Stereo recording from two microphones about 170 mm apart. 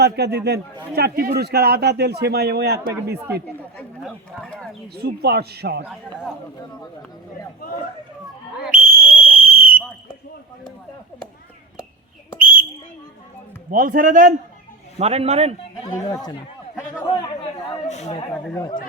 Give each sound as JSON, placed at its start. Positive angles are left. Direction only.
{"t": 0.0, "sound": "speech", "side_deg": -80}
{"t": 0.9, "sound": "speech", "side_deg": -65}
{"t": 3.2, "sound": "speech", "side_deg": -15}
{"t": 3.4, "sound": "speech", "side_deg": 5}
{"t": 4.9, "sound": "speech", "side_deg": -70}
{"t": 8.7, "sound": "whistle", "side_deg": -55}
{"t": 12.4, "sound": "a sound", "side_deg": -55}
{"t": 13.7, "sound": "a man's voice", "side_deg": -55}
{"t": 14.9, "sound": "a man's voice", "side_deg": -35}
{"t": 15.8, "sound": "speech", "side_deg": 20}
{"t": 17.8, "sound": "speech", "side_deg": 40}